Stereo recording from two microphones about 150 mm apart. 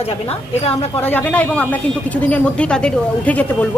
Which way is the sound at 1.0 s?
10° left (ahead or behind).